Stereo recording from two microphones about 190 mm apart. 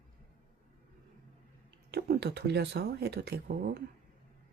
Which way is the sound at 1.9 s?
60° right (ahead or behind).